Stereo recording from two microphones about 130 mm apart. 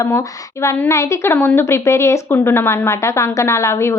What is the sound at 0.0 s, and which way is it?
A woman's voice, 20° left (ahead or behind).